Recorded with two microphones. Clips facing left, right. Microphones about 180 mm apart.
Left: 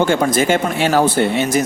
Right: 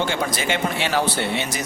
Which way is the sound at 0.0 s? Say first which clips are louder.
Left 9 dB; 50° left (ahead or behind).